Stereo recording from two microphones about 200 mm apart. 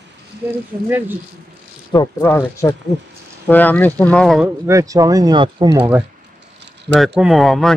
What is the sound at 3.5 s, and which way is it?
Speech, 10° left (ahead or behind).